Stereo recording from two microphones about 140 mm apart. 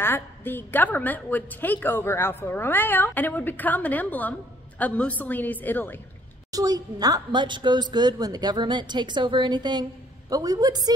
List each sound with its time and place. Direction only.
0.0 s a woman's voice: 15° left (ahead or behind)
6.5 s a woman's voice: 25° right (ahead or behind)